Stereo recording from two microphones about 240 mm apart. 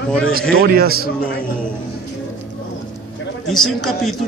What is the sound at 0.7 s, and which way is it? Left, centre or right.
Speech, right.